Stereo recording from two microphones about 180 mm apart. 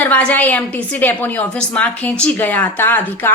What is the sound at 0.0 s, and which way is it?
A woman's voice, 10° left (ahead or behind).